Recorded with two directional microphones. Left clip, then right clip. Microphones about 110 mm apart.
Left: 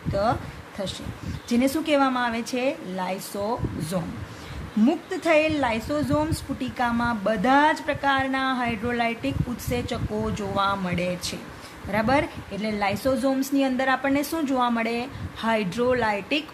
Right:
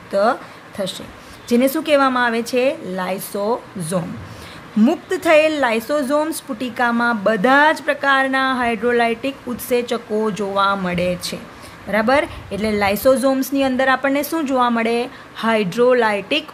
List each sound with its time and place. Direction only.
0.1 s a woman's voice: 40° right (ahead or behind)
12.5 s a woman's voice: 50° right (ahead or behind); by 16.4 s 35° right (ahead or behind)